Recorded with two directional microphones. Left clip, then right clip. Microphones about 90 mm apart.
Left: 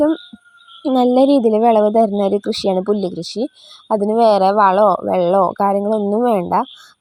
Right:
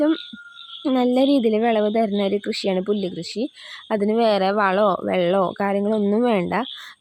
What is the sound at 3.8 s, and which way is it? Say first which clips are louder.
Speech: left 6 dB; 10° left (ahead or behind).